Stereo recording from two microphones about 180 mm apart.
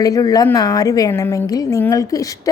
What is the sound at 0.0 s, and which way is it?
A woman's voice, 20° left (ahead or behind).